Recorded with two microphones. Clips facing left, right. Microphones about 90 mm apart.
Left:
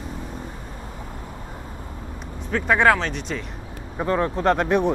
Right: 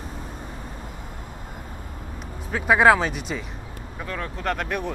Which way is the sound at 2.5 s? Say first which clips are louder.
Right 1 dB; 5° right (ahead or behind).